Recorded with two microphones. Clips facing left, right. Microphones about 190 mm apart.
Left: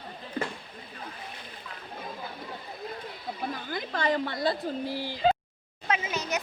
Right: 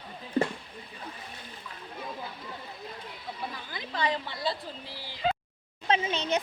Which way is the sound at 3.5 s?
50° left (ahead or behind).